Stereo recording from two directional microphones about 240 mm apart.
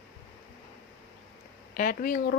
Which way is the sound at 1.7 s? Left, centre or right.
Left.